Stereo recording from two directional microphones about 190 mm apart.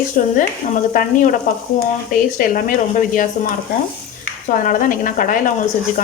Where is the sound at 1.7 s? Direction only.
40° left (ahead or behind).